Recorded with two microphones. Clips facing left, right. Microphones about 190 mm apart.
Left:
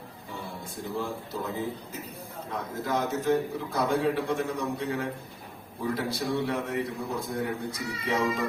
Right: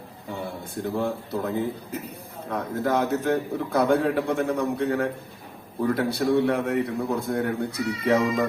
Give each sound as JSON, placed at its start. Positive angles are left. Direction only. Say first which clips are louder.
{"t": 0.9, "sound": "a man's voice", "louder": "right 5 dB", "side_deg": -60}